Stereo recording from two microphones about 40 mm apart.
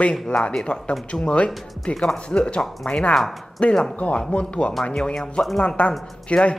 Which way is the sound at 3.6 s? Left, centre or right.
Left.